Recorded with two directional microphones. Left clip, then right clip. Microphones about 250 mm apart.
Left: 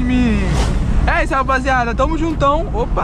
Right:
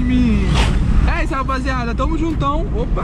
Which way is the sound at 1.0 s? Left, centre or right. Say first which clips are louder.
Left 6 dB; left.